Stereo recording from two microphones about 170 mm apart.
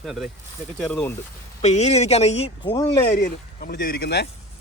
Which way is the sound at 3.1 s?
60° left (ahead or behind).